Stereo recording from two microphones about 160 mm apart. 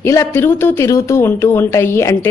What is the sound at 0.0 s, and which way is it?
A woman's voice, 20° left (ahead or behind).